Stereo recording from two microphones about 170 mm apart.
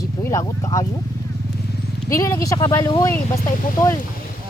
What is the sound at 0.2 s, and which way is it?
Speech, 20° left (ahead or behind).